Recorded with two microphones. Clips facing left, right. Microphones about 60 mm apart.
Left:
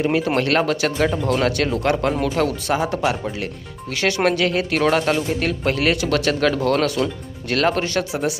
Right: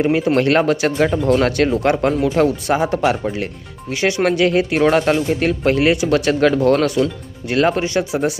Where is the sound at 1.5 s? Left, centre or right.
Right.